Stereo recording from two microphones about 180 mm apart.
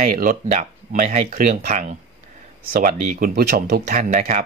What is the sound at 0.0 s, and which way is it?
Speech, 50° right (ahead or behind).